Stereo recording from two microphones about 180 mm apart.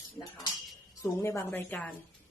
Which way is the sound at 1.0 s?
15° left (ahead or behind).